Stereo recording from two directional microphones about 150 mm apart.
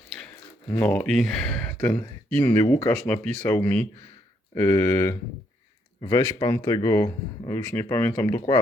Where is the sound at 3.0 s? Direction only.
10° left (ahead or behind); by 8.6 s 25° left (ahead or behind).